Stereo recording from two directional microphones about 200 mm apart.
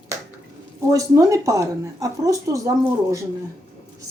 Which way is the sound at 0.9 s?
15° right (ahead or behind).